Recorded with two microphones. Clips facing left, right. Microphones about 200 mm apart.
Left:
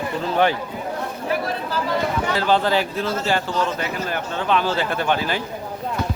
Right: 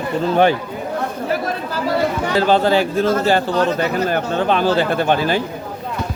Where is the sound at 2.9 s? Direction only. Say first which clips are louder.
Right 7 dB; 50° right (ahead or behind).